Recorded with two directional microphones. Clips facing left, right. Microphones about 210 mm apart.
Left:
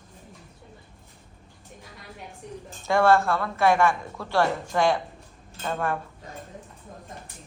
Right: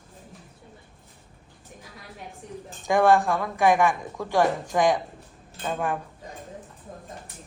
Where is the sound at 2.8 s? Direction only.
15° right (ahead or behind).